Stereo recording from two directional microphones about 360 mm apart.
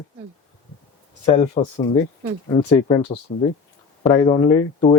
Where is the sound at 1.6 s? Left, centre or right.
Centre.